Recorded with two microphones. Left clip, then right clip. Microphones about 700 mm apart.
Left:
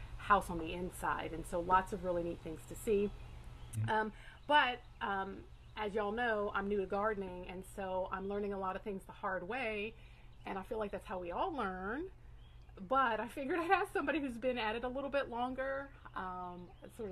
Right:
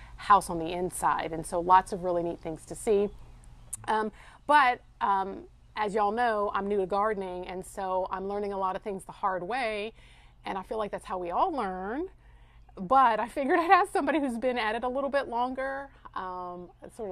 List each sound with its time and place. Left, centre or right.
0.2 s a woman's voice: right